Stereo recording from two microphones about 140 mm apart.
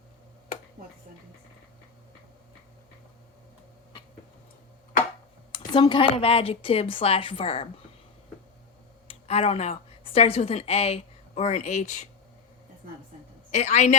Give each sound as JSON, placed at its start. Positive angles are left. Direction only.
{"t": 5.5, "sound": "speech", "side_deg": 35}
{"t": 9.0, "sound": "a woman's voice", "side_deg": 45}
{"t": 13.5, "sound": "a woman's voice", "side_deg": 55}